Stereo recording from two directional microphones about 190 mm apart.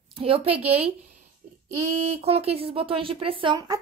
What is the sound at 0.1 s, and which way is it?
Speech, 30° right (ahead or behind).